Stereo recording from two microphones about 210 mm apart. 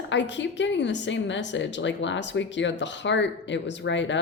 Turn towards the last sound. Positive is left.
turn(degrees=60)  # may be behind; listen again after turning